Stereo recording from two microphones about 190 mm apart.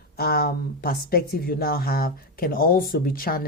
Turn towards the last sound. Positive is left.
turn(degrees=50)  # may be behind; listen again after turning